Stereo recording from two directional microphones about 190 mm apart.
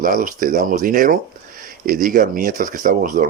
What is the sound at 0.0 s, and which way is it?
Speech, 45° right (ahead or behind).